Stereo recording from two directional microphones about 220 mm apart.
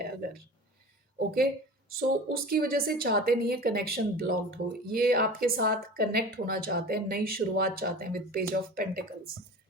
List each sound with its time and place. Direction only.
2.0 s a woman's voice: 45° right (ahead or behind)